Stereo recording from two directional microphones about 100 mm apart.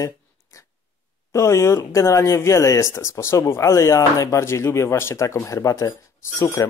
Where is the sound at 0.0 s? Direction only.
35° left (ahead or behind).